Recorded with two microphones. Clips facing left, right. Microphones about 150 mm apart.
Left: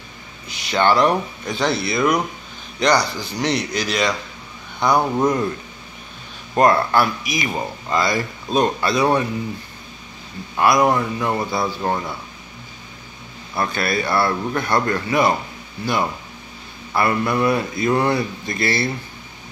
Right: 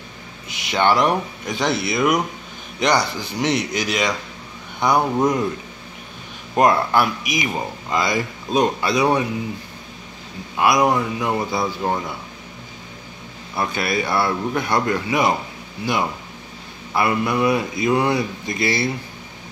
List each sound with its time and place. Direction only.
0.5 s speech: 20° right (ahead or behind)
6.5 s speech: 15° right (ahead or behind)
10.5 s speech: 10° right (ahead or behind)
13.6 s speech: 15° right (ahead or behind)